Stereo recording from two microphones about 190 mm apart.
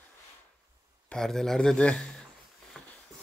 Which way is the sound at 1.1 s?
5° left (ahead or behind).